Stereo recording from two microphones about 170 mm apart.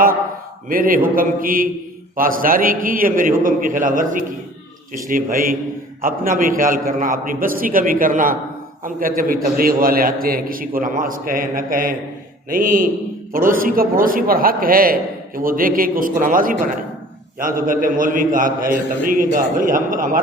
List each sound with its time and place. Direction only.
0.7 s a man's voice: 55° right (ahead or behind)